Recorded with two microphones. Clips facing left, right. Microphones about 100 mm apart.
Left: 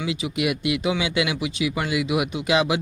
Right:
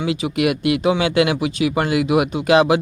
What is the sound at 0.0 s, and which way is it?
Speech, 55° right (ahead or behind).